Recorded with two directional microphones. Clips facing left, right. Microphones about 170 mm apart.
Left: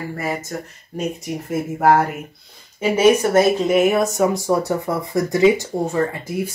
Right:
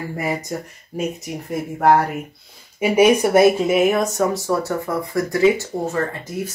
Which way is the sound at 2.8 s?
10° right (ahead or behind).